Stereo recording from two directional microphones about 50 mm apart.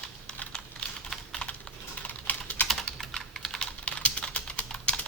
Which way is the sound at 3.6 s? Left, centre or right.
Left.